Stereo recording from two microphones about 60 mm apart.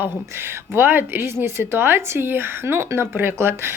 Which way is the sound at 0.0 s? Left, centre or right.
Right.